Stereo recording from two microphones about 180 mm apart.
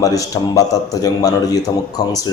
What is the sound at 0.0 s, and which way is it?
A man's voice, 20° left (ahead or behind).